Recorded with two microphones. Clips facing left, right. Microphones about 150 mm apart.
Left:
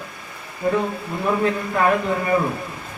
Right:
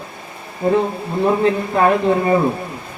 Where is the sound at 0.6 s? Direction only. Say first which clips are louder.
Right 5 dB; 30° right (ahead or behind).